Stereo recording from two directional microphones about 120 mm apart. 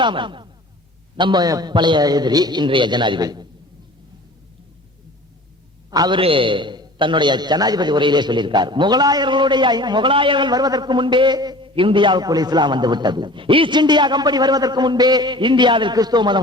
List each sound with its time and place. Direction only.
0.0 s a man's voice: 40° right (ahead or behind)
5.9 s a man's voice: 35° right (ahead or behind)
6.1 s a man's voice: 45° right (ahead or behind)